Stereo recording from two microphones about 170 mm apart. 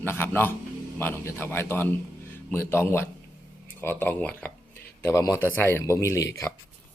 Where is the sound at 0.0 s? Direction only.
15° left (ahead or behind).